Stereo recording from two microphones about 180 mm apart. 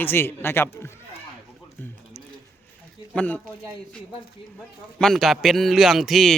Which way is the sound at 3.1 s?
5° left (ahead or behind).